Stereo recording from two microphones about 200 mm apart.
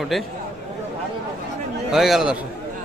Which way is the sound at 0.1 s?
Centre (ahead or behind).